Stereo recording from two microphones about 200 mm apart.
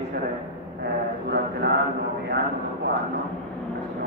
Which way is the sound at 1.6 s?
50° right (ahead or behind).